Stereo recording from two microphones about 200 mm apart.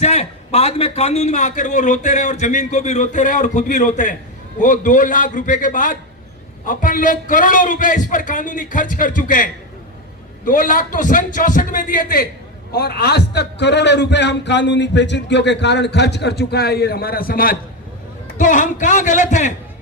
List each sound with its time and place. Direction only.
0.0 s a man's voice: 35° left (ahead or behind)